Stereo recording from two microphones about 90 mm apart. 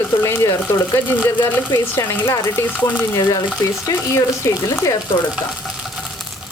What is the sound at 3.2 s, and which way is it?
Speech, 50° left (ahead or behind).